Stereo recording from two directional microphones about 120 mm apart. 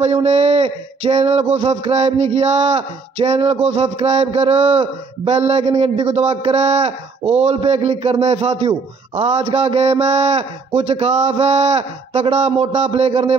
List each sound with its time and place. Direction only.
0.0 s a man's voice: 60° right (ahead or behind)